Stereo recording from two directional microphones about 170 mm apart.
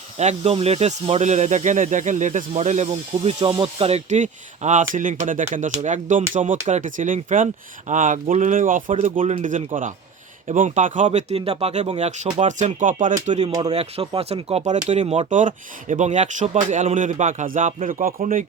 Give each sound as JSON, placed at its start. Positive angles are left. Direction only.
{"t": 0.2, "sound": "speech", "side_deg": -40}
{"t": 13.5, "sound": "speech", "side_deg": -25}
{"t": 13.7, "sound": "speech", "side_deg": -35}
{"t": 15.3, "sound": "speech", "side_deg": -50}